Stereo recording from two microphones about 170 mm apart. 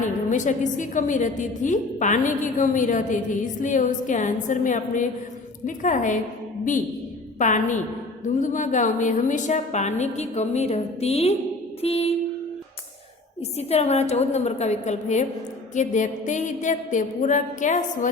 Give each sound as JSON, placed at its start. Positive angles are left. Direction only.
{"t": 0.0, "sound": "a woman's voice", "side_deg": 45}
{"t": 7.3, "sound": "a woman's voice", "side_deg": 45}
{"t": 13.6, "sound": "a woman's voice", "side_deg": 40}